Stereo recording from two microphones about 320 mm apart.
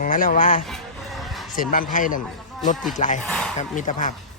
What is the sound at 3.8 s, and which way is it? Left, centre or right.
Speech, left.